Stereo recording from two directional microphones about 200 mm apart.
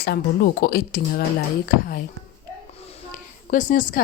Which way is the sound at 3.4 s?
40° left (ahead or behind).